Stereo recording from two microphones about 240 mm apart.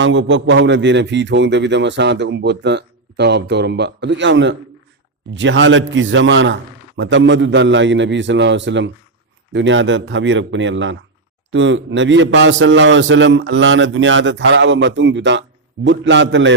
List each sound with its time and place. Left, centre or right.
0.0 s a man's voice: right